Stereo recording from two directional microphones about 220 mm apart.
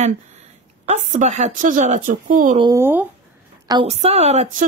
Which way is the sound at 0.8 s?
35° right (ahead or behind).